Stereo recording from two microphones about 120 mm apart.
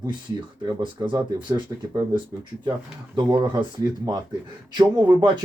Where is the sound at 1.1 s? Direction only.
35° right (ahead or behind).